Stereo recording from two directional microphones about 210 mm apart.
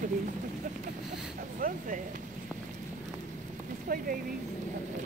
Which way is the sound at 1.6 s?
40° right (ahead or behind).